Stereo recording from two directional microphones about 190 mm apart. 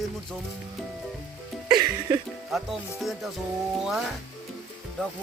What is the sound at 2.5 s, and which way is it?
Music, centre (ahead or behind).